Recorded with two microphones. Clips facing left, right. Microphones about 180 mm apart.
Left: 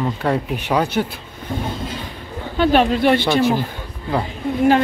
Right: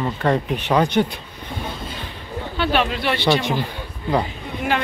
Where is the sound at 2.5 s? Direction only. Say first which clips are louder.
Left 6 dB; 40° left (ahead or behind).